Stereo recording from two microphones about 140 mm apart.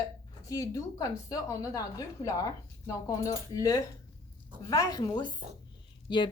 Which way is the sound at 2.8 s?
25° left (ahead or behind).